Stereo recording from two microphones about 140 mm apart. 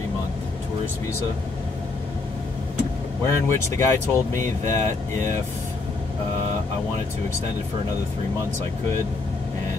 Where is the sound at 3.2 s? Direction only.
20° left (ahead or behind).